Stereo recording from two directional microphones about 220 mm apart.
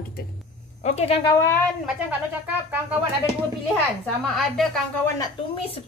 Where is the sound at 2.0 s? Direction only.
10° right (ahead or behind).